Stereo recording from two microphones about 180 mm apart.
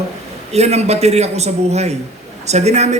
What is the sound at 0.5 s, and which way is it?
A man's voice, 35° right (ahead or behind).